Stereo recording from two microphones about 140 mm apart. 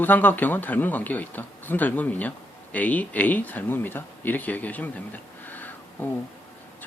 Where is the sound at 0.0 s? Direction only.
15° left (ahead or behind).